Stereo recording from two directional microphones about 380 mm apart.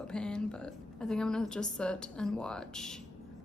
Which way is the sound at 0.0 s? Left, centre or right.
Centre.